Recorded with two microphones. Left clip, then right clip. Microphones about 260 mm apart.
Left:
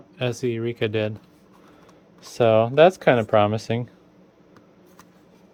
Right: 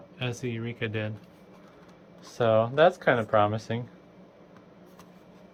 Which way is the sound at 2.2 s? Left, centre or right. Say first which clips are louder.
Left 6 dB; left.